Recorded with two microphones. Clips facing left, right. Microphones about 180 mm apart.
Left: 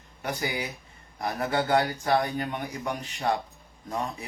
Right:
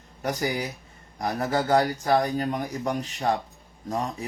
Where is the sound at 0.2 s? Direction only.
40° right (ahead or behind).